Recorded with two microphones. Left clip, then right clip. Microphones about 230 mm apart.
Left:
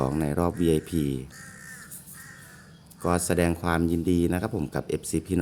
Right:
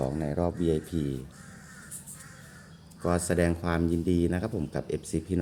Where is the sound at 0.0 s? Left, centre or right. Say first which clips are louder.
Left 3 dB; left.